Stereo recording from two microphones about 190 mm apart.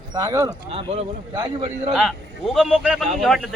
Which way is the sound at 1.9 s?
Centre (ahead or behind).